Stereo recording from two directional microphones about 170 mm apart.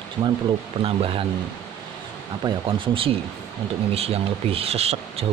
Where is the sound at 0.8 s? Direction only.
35° right (ahead or behind).